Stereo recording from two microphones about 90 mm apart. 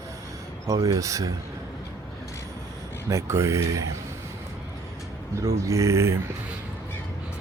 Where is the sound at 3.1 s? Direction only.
35° right (ahead or behind).